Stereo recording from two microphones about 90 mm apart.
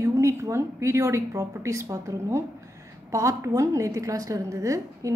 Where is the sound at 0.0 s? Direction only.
35° right (ahead or behind).